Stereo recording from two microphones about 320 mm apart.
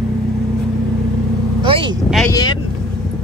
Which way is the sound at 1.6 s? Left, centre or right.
Centre.